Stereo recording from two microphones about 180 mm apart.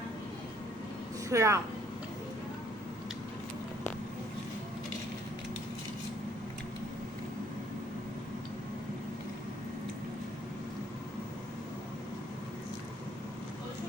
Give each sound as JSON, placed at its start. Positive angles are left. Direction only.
{"t": 1.3, "sound": "speech", "side_deg": -15}